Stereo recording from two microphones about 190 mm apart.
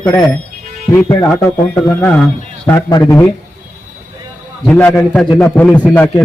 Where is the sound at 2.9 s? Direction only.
20° left (ahead or behind).